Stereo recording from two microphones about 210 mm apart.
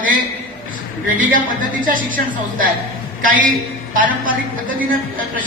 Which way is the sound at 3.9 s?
40° right (ahead or behind).